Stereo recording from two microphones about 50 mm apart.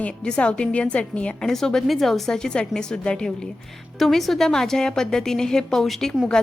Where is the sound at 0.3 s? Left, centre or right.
Centre.